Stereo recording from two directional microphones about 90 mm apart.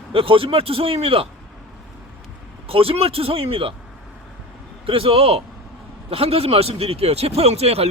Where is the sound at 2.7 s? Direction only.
90° right.